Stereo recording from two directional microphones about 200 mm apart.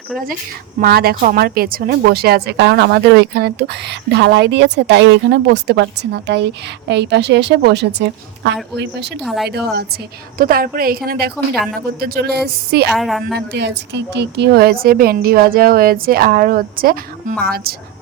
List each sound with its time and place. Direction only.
0.8 s a woman's voice: 50° right (ahead or behind)
9.2 s a woman's voice: centre (ahead or behind)
9.5 s a woman's voice: 50° right (ahead or behind)
12.9 s a woman's voice: centre (ahead or behind)
13.5 s a woman's voice: 60° right (ahead or behind)